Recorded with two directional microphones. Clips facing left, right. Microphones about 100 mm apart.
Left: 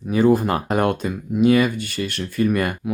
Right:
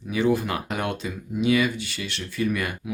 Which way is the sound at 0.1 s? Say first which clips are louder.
Left 6 dB; 40° left (ahead or behind).